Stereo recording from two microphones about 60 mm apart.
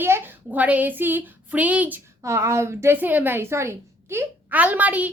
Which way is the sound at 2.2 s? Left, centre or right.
Right.